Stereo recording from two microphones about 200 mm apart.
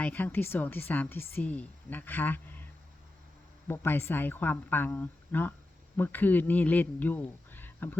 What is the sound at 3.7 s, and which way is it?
Speech, 10° left (ahead or behind).